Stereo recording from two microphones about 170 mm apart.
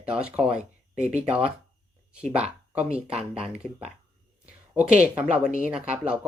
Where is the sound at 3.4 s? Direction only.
5° right (ahead or behind).